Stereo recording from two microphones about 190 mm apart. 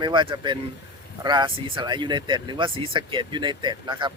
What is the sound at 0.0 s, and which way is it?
Speech, 25° right (ahead or behind).